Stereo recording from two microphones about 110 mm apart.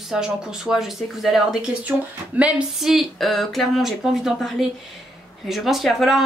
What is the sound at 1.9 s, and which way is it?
Speech, 20° right (ahead or behind).